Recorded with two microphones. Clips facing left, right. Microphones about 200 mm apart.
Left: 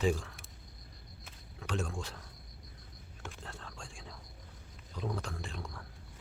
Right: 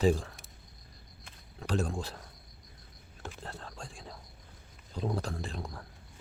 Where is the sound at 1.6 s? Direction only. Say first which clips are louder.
Right 5 dB; 35° right (ahead or behind).